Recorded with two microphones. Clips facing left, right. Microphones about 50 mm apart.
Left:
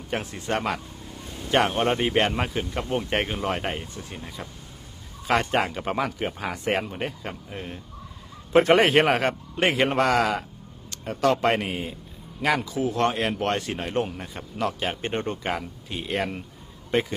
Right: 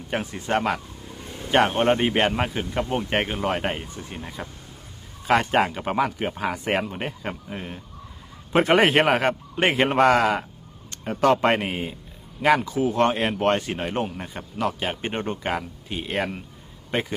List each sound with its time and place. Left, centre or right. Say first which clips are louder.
0.1 s speech: right 2 dB; centre
0.3 s speech: right 4 dB; right
3.9 s speech: right 2 dB; right
5.4 s speech: right 3 dB; centre
9.2 s speech: right 2 dB; right
10.9 s a sound: right 3 dB; centre
11.4 s speech: right 2 dB; right
14.0 s speech: right 1 dB; centre
15.1 s speech: right 1 dB; centre